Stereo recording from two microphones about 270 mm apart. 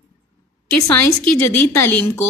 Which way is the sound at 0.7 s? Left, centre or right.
Left.